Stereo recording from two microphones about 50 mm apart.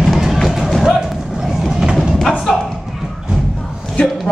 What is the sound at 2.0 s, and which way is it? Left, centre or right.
Thump, centre.